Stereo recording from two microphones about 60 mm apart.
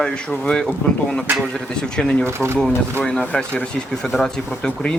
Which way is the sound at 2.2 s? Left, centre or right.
Right.